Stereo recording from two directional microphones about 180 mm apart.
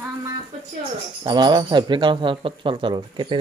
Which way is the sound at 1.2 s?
25° right (ahead or behind).